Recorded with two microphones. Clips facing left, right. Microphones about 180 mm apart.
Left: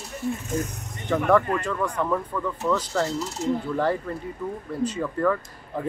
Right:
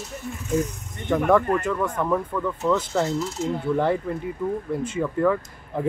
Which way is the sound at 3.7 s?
20° right (ahead or behind).